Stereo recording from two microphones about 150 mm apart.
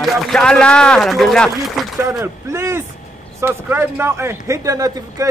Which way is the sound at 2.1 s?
20° right (ahead or behind).